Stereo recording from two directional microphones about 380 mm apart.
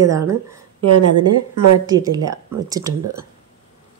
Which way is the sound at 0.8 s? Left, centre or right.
Right.